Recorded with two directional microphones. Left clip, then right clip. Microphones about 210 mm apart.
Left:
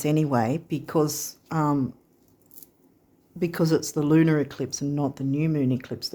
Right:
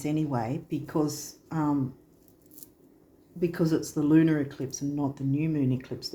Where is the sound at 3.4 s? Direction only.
50° left (ahead or behind).